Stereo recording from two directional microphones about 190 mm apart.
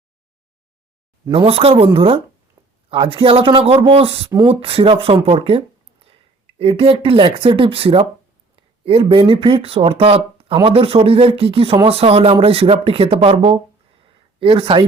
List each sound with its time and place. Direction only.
1.3 s speech: 30° right (ahead or behind)
2.6 s a sound: 30° right (ahead or behind)
2.9 s speech: 25° right (ahead or behind)